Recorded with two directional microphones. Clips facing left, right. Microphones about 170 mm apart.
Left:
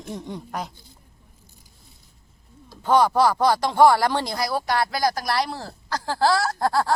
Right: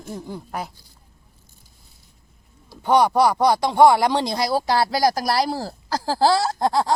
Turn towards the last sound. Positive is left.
turn(degrees=-20)  # may be behind; listen again after turning